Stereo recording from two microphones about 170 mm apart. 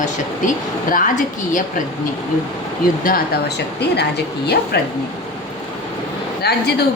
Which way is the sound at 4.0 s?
70° left (ahead or behind).